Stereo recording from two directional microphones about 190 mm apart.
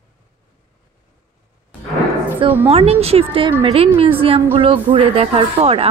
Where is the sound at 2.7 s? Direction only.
30° right (ahead or behind).